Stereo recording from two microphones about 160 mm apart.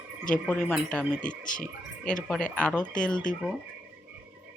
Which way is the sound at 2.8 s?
55° left (ahead or behind).